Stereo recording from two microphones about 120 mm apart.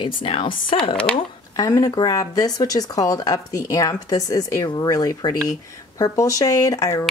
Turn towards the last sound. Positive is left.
turn(degrees=25)  # may be behind; listen again after turning